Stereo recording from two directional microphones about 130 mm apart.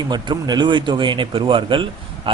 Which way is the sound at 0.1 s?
35° right (ahead or behind).